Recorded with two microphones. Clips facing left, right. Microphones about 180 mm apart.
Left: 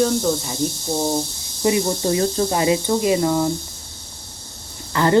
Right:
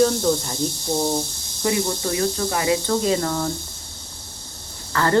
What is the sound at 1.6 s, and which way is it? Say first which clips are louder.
Speech: left 4 dB; 25° left (ahead or behind).